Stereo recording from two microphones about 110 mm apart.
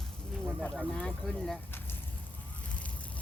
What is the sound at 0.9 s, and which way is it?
Speech, 10° left (ahead or behind).